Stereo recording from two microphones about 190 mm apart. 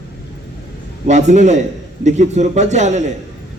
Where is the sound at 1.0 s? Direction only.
40° right (ahead or behind).